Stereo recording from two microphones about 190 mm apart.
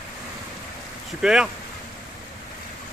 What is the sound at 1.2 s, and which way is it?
Speech, 5° right (ahead or behind).